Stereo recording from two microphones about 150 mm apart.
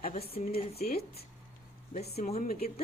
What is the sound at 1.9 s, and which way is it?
Speech, 45° left (ahead or behind).